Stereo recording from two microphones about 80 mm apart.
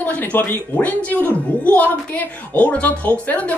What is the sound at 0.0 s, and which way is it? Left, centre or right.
Speech, left.